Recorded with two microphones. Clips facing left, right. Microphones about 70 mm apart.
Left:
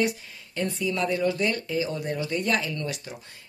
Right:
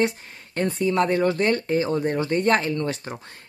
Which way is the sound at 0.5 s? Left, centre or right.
Right.